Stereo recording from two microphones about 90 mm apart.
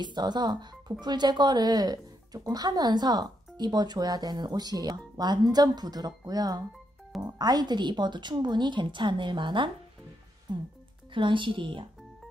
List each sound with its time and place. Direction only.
0.0 s a woman's voice: 55° right (ahead or behind)